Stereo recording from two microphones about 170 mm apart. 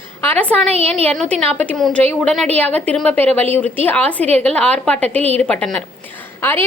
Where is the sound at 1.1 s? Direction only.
5° left (ahead or behind).